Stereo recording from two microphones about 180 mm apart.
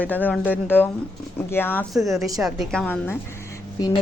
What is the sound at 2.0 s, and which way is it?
A woman's voice, centre (ahead or behind).